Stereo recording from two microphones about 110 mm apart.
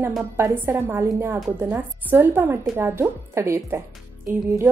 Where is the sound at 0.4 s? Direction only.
25° right (ahead or behind).